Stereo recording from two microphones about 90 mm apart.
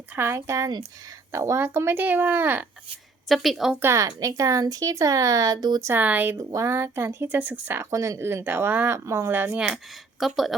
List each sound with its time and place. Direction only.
0.2 s speech: 30° right (ahead or behind)
3.2 s speech: centre (ahead or behind)
3.8 s speech: 30° right (ahead or behind)
4.0 s speech: 40° right (ahead or behind)
5.8 s speech: 20° right (ahead or behind)
6.3 s speech: 35° right (ahead or behind); by 7.9 s 20° right (ahead or behind)
7.9 s speech: 35° right (ahead or behind)
9.6 s speech: 5° right (ahead or behind)